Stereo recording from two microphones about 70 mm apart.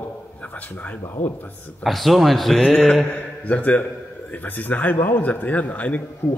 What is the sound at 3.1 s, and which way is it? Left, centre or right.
A man's voice, left.